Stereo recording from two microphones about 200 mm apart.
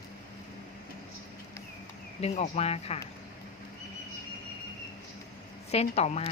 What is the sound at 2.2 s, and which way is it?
Speech, 30° left (ahead or behind).